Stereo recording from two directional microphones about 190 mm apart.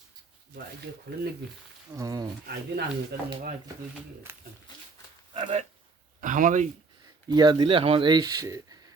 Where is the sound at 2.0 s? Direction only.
20° right (ahead or behind).